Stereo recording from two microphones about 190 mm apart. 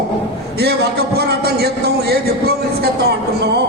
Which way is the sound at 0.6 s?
60° right (ahead or behind).